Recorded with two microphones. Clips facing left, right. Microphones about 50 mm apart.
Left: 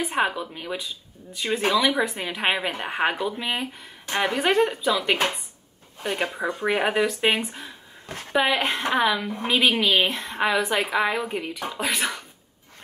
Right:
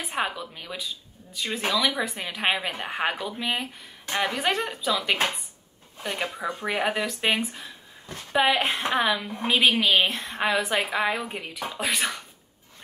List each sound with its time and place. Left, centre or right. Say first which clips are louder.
0.0 s a woman's voice: left 5 dB; centre
6.2 s a woman's voice: left 4 dB; left; by 12.2 s centre